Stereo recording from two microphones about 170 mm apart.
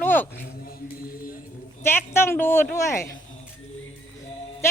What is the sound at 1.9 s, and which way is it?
A woman's voice, 15° left (ahead or behind).